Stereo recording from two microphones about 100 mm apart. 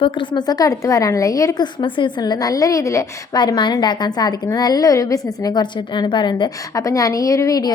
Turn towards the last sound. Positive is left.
turn(degrees=40)  # may be behind; listen again after turning